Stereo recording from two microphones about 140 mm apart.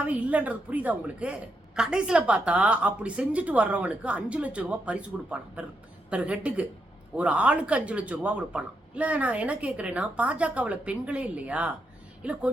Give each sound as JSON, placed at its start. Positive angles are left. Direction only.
{"t": 0.0, "sound": "a woman's voice", "side_deg": -10}